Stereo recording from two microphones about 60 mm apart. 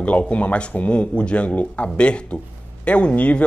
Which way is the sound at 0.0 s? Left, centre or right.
Left.